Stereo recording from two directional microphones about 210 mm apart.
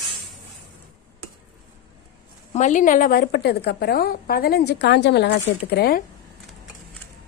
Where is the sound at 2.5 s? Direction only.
35° left (ahead or behind).